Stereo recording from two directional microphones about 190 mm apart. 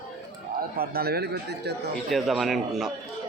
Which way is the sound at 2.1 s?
Centre (ahead or behind).